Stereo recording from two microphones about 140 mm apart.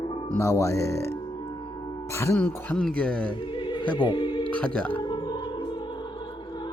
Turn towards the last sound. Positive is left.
turn(degrees=30)  # may be behind; listen again after turning